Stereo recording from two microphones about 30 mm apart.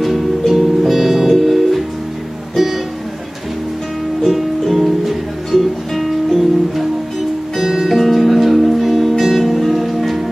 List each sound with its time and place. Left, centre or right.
0.0 s music: centre
4.2 s music: centre
7.9 s music: centre